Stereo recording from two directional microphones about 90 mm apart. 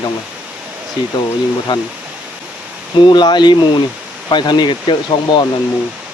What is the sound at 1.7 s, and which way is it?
Speech, 65° left (ahead or behind).